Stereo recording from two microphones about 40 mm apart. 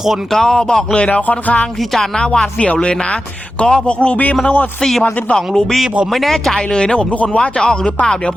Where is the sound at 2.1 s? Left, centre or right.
Left.